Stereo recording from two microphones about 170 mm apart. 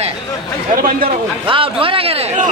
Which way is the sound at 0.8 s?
60° right (ahead or behind).